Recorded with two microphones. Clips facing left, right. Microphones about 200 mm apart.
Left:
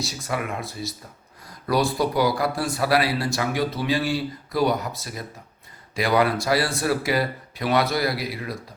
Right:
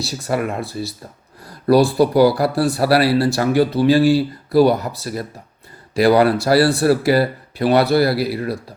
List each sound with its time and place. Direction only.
0.0 s speech: 35° right (ahead or behind)